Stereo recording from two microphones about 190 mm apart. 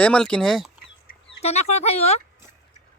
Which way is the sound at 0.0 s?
5° left (ahead or behind).